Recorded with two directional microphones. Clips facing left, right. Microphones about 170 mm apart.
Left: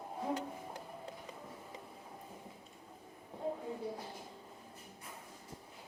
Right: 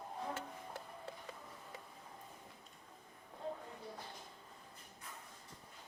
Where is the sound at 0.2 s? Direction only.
15° left (ahead or behind).